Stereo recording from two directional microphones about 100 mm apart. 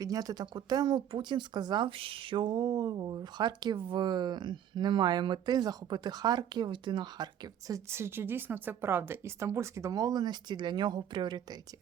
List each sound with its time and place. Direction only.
0.0 s speech: 40° right (ahead or behind)
7.9 s a woman's voice: 25° right (ahead or behind); by 11.5 s 50° right (ahead or behind)